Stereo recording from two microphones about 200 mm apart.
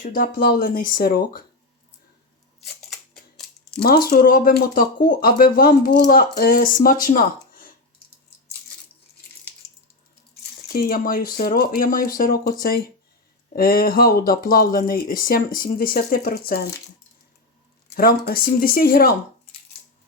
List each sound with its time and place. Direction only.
0.0 s speech: 45° left (ahead or behind)
2.6 s scissors: centre (ahead or behind)
3.8 s speech: 50° left (ahead or behind)
10.7 s speech: 50° left (ahead or behind)
17.8 s speech: 50° left (ahead or behind)